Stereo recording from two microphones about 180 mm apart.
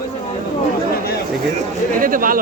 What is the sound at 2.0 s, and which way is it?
Speech, 50° right (ahead or behind).